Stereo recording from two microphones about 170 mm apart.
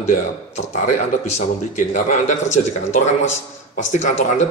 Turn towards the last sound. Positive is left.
turn(degrees=45)  # may be behind; listen again after turning